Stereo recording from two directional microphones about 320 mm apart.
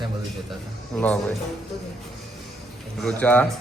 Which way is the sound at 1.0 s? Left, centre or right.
Centre.